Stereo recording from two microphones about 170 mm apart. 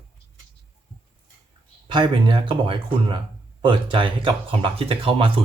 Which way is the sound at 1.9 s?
25° right (ahead or behind).